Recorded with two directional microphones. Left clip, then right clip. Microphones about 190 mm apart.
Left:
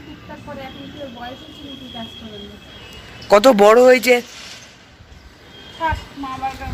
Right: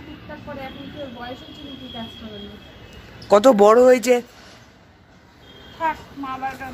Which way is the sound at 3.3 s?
5° right (ahead or behind).